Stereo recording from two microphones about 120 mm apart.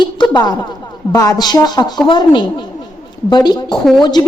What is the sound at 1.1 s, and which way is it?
A woman's voice, 30° left (ahead or behind).